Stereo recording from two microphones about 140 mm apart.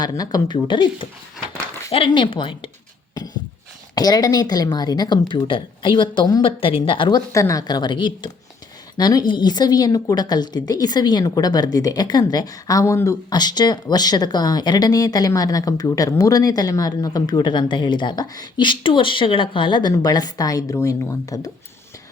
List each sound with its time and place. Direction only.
0.0 s speech: 25° left (ahead or behind)
3.2 s a sound: 30° left (ahead or behind)
3.9 s a woman's voice: 30° left (ahead or behind)
7.3 s a woman's voice: 25° left (ahead or behind)